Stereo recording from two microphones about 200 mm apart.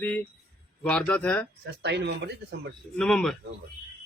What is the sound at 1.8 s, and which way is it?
Speech, 60° right (ahead or behind).